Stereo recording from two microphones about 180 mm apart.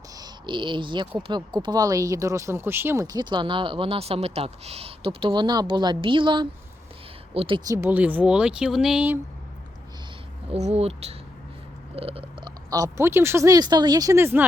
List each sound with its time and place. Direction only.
0.2 s speech: 25° right (ahead or behind)
7.8 s speech: 10° right (ahead or behind)
10.5 s speech: 35° right (ahead or behind); by 14.4 s 15° right (ahead or behind)